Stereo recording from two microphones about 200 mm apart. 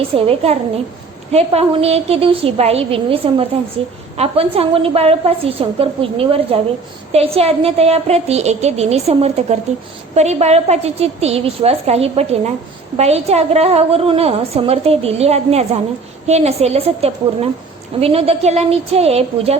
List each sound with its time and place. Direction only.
0.1 s a woman's voice: 30° right (ahead or behind)